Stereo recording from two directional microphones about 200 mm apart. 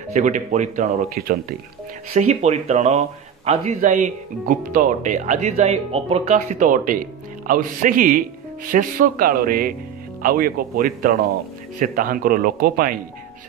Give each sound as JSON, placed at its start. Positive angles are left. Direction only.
{"t": 0.1, "sound": "speech", "side_deg": -35}